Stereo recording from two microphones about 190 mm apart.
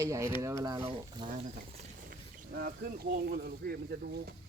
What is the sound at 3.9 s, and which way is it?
Speech, 55° right (ahead or behind).